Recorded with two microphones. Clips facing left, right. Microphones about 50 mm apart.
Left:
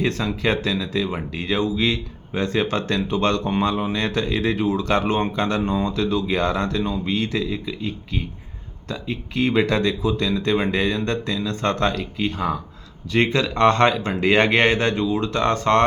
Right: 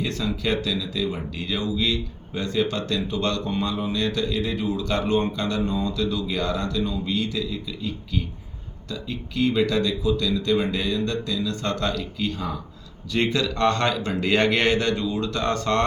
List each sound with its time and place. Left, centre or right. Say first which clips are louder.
0.4 s a man's voice: left 4 dB; left